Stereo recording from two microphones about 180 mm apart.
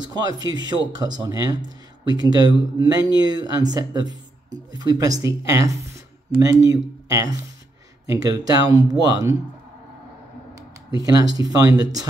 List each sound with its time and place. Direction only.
0.0 s speech: 25° right (ahead or behind)
11.0 s speech: 20° right (ahead or behind)